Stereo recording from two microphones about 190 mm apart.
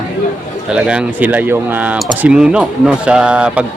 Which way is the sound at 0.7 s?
5° right (ahead or behind).